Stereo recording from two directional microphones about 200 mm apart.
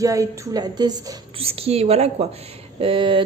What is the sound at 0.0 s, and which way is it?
Speech, 15° right (ahead or behind).